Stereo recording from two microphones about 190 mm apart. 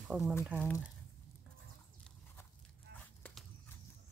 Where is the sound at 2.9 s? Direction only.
55° right (ahead or behind).